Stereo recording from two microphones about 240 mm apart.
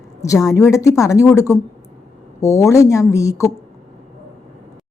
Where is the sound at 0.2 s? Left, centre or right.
Centre.